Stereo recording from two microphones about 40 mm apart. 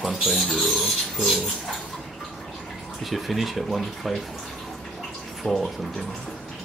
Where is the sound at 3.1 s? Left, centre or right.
Centre.